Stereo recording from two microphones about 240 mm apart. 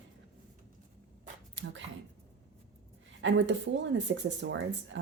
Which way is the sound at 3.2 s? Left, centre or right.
Right.